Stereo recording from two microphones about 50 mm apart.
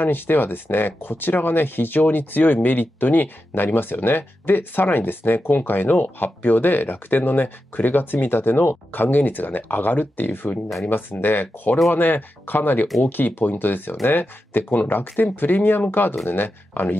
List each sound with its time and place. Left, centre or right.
0.0 s speech: left